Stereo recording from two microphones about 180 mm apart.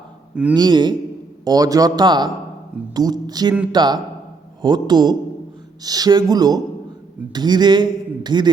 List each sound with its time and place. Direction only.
0.5 s speech: 25° right (ahead or behind)